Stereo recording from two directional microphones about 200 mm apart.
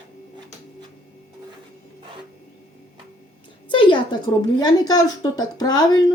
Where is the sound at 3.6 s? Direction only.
25° left (ahead or behind).